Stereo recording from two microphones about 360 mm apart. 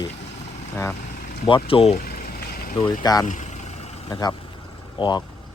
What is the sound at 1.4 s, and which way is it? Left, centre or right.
Speech, centre.